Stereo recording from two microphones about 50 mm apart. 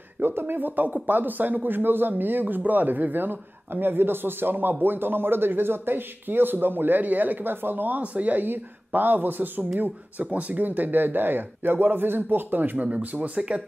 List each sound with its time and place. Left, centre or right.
0.2 s speech: right
12.8 s speech: right